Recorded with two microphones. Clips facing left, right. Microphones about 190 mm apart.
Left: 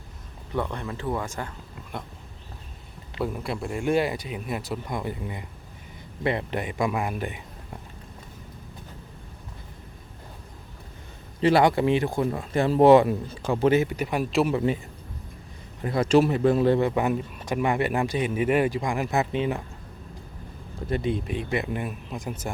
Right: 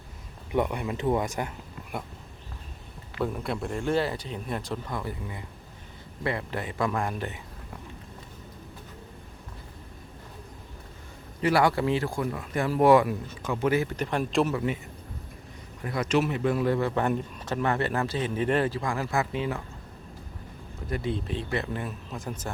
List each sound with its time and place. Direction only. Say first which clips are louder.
0.5 s a man's voice: right 3 dB; 15° right (ahead or behind)
3.2 s speech: left 1 dB; centre (ahead or behind)
11.3 s speech: left 4 dB; 25° left (ahead or behind)
13.8 s speech: left 2 dB; 10° left (ahead or behind)
14.5 s speech: left 4 dB; 30° left (ahead or behind)
15.8 s speech: left 6 dB; 30° left (ahead or behind)
16.9 s speech: left 2 dB; 5° left (ahead or behind)
20.9 s speech: left 3 dB; 15° left (ahead or behind)